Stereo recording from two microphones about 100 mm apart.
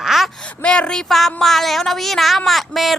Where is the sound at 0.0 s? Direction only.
Centre (ahead or behind).